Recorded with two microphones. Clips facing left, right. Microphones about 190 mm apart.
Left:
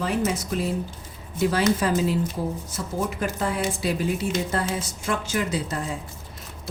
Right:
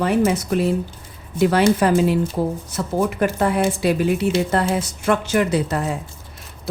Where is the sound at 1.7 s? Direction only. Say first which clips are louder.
Right 6 dB; 65° right (ahead or behind).